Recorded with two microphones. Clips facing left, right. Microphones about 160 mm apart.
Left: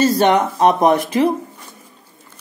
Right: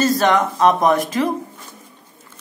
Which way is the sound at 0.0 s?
25° left (ahead or behind).